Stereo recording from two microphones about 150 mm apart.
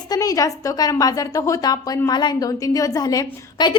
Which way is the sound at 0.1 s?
25° left (ahead or behind).